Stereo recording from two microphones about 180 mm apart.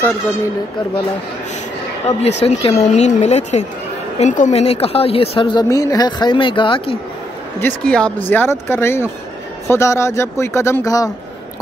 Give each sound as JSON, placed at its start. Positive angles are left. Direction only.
{"t": 2.1, "sound": "a woman's voice", "side_deg": 35}
{"t": 7.6, "sound": "speech", "side_deg": 5}